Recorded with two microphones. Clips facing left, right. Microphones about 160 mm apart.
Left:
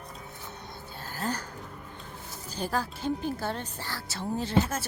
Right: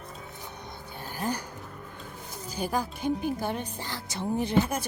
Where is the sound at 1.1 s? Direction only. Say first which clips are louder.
Right 1 dB; 15° right (ahead or behind).